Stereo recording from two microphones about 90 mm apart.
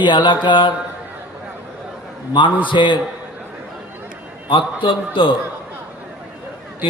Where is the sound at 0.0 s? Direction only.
60° left (ahead or behind).